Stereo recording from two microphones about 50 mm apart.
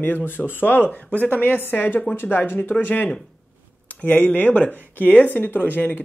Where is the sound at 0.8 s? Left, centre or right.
Left.